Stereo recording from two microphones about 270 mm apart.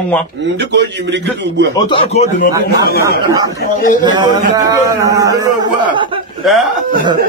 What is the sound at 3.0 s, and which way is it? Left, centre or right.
A man's voice, centre.